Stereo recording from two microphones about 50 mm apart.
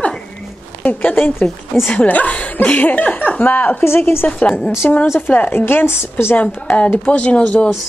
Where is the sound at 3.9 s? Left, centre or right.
Left.